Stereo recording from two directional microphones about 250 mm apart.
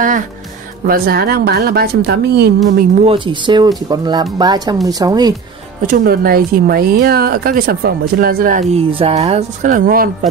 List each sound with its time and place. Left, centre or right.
0.8 s speech: right
3.0 s speech: right
5.9 s speech: right